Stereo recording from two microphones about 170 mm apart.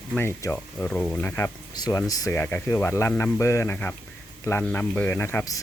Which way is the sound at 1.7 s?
25° left (ahead or behind).